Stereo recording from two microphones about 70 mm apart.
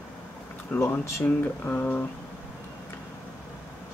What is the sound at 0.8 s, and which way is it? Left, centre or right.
Speech, left.